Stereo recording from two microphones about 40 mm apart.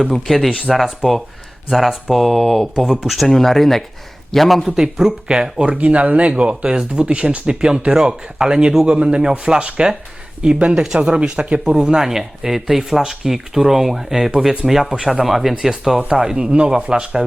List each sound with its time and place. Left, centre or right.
0.0 s speech: centre
3.2 s speech: centre
4.8 s speech: centre
5.6 s speech: right; by 11.1 s centre
11.1 s speech: right
11.6 s speech: centre
16.0 s speech: centre